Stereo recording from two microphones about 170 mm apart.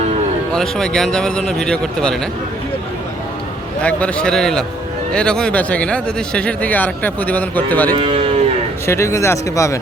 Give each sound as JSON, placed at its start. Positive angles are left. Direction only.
{"t": 0.5, "sound": "speech", "side_deg": 5}
{"t": 3.8, "sound": "speech", "side_deg": 5}
{"t": 7.9, "sound": "speech", "side_deg": -35}
{"t": 8.9, "sound": "speech", "side_deg": 15}